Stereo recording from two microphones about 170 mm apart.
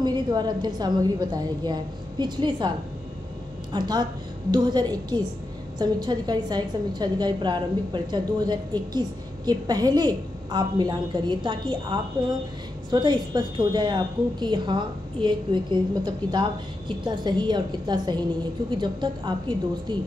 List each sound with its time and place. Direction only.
0.0 s a woman's voice: 25° right (ahead or behind)
3.7 s a woman's voice: 25° right (ahead or behind)